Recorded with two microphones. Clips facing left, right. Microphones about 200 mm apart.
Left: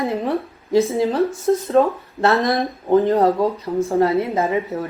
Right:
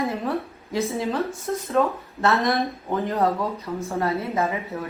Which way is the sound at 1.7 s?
30° left (ahead or behind).